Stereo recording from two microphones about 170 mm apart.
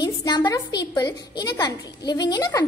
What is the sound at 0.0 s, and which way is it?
A woman's voice, 25° left (ahead or behind).